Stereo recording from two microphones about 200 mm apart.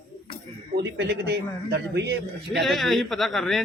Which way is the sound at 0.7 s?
55° right (ahead or behind).